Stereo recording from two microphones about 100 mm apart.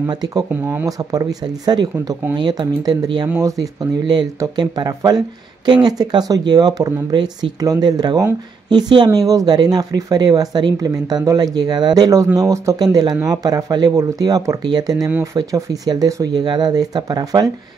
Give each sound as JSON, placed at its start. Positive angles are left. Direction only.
{"t": 0.1, "sound": "speech", "side_deg": -45}